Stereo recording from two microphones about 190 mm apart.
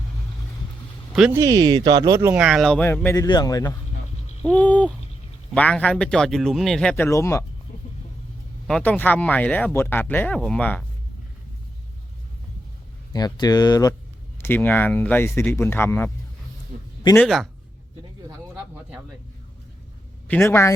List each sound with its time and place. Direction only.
1.1 s speech: 5° right (ahead or behind)
1.4 s speech: 20° right (ahead or behind); by 3.8 s 20° left (ahead or behind)
4.4 s speech: 10° left (ahead or behind)
8.6 s speech: 5° left (ahead or behind)
13.1 s speech: 20° left (ahead or behind)
17.2 s speech: centre (ahead or behind)
20.2 s speech: 10° left (ahead or behind)